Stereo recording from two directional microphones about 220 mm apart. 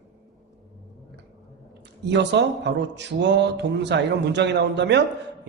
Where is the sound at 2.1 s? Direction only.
55° right (ahead or behind).